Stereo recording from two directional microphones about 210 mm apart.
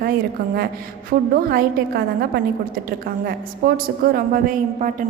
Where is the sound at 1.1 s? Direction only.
45° right (ahead or behind).